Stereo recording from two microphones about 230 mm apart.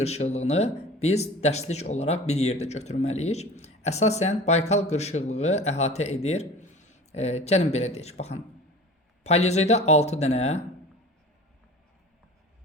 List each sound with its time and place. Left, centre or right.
0.0 s speech: left